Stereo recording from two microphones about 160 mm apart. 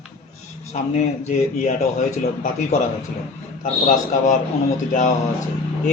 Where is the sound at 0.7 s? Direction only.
45° left (ahead or behind).